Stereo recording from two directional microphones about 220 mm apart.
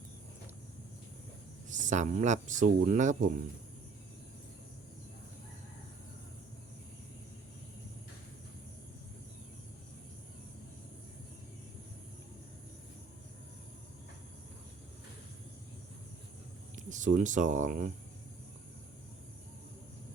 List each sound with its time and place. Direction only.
1.7 s speech: 35° right (ahead or behind)
16.7 s speech: 35° right (ahead or behind)